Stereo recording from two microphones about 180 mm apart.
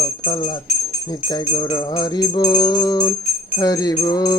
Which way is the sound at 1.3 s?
25° left (ahead or behind).